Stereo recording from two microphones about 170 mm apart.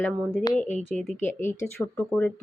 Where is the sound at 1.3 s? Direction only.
15° left (ahead or behind).